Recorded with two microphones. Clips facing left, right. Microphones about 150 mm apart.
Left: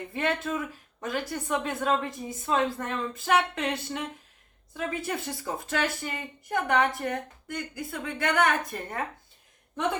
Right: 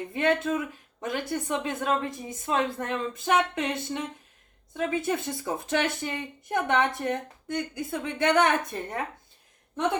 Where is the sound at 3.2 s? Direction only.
20° right (ahead or behind).